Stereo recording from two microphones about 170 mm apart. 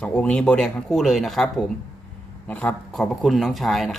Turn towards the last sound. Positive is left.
turn(degrees=0)  # may be behind; listen again after turning